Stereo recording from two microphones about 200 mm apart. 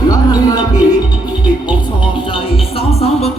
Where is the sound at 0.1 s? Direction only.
20° left (ahead or behind).